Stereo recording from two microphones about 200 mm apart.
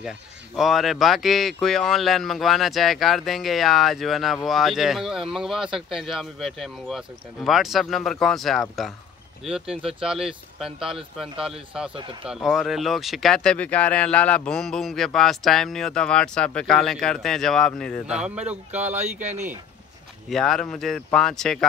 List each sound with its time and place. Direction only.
0.6 s speech: centre (ahead or behind)
11.9 s speech: 25° right (ahead or behind)
12.3 s speech: centre (ahead or behind)
18.9 s speech: 35° right (ahead or behind)
20.2 s speech: centre (ahead or behind)